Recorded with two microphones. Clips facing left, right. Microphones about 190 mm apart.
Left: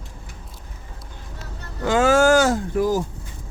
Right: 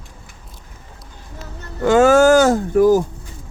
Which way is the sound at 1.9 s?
45° right (ahead or behind).